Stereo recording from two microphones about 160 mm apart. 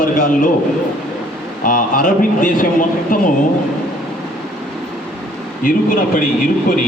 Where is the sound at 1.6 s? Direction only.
60° left (ahead or behind).